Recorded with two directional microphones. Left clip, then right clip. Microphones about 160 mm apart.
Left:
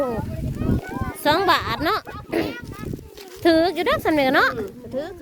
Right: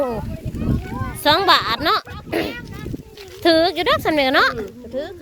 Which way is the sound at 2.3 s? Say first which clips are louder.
Right 2 dB; 10° left (ahead or behind).